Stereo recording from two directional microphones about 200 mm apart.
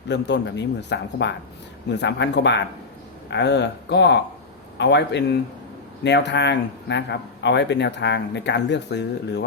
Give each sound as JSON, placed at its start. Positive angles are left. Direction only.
{"t": 0.1, "sound": "speech", "side_deg": 60}